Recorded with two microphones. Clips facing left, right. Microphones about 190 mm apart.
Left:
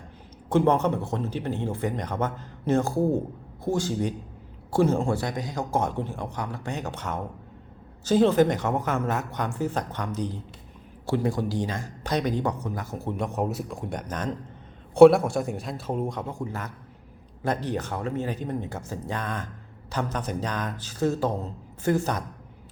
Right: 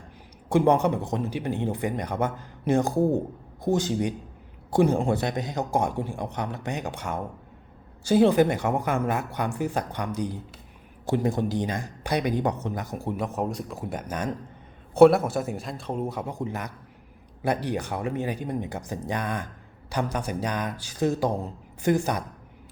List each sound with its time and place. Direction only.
0.4 s a man's voice: 10° right (ahead or behind)
13.1 s a man's voice: centre (ahead or behind)
16.3 s speech: 20° right (ahead or behind)